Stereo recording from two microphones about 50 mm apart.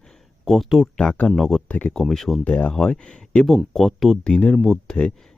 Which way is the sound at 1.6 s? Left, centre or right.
Left.